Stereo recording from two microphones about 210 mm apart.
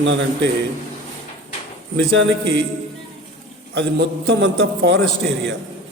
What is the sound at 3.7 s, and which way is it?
Mantra, 55° right (ahead or behind).